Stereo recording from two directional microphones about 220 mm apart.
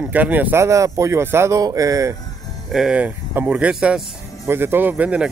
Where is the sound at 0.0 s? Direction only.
5° right (ahead or behind).